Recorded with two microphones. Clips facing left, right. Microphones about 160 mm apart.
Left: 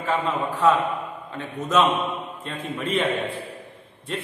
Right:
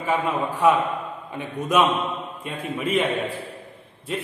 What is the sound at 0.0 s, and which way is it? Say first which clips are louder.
A man's voice: right 1 dB; 10° right (ahead or behind).